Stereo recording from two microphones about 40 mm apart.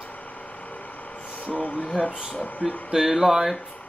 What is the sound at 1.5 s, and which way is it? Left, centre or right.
Speech, left.